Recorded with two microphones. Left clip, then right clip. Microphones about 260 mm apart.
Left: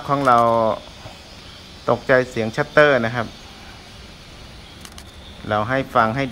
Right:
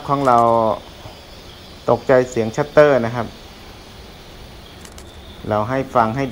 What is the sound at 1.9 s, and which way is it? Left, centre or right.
Speech, centre.